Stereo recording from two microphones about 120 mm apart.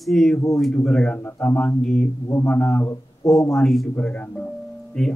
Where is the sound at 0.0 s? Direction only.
Centre (ahead or behind).